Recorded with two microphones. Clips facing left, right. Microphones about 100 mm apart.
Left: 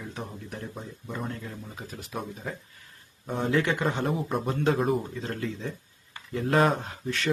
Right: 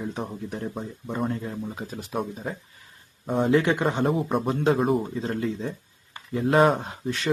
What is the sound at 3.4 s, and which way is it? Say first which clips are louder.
Speech: right 4 dB; 20° right (ahead or behind).